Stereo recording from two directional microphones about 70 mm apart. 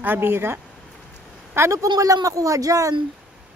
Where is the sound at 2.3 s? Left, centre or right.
Right.